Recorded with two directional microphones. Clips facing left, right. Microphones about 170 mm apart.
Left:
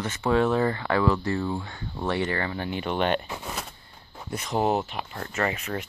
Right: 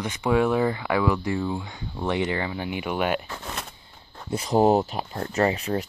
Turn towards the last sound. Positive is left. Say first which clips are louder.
# right 5 dB
turn(degrees=-35)  # may be behind; listen again after turning